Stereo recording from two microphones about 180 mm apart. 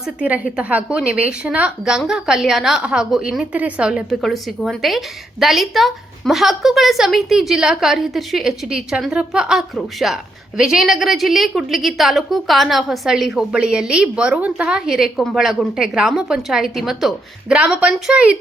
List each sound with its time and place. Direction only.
0.2 s a woman's voice: 5° right (ahead or behind)